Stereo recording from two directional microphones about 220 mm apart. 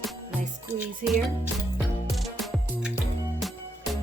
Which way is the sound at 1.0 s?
40° right (ahead or behind).